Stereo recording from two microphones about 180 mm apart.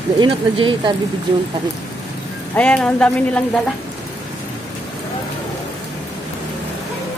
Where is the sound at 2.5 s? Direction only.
5° left (ahead or behind).